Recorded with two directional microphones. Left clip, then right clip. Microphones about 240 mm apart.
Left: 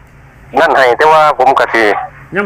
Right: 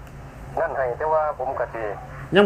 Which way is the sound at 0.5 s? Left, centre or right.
Left.